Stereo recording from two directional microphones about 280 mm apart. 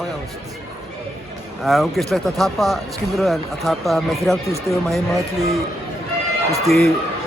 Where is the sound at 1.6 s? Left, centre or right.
Centre.